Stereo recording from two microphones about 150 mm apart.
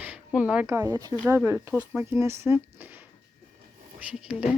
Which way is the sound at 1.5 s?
15° right (ahead or behind).